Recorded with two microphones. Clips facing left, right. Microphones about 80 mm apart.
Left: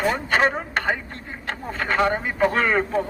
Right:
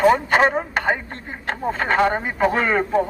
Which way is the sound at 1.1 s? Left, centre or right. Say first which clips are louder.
Right 3 dB; right.